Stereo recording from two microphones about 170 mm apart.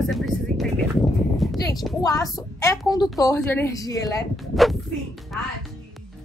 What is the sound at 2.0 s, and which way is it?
A woman's voice, 20° left (ahead or behind).